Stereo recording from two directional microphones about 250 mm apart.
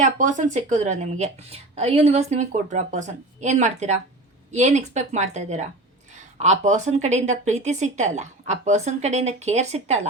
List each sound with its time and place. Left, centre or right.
0.0 s a woman's voice: right